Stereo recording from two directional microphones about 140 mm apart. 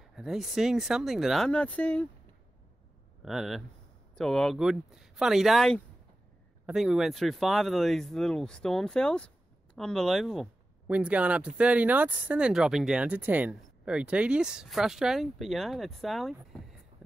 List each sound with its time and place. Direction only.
0.1 s speech: 5° right (ahead or behind)
3.3 s speech: centre (ahead or behind)
10.9 s speech: 10° right (ahead or behind)